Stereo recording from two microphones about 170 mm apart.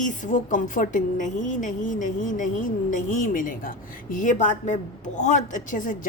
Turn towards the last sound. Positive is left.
turn(degrees=55)  # may be behind; listen again after turning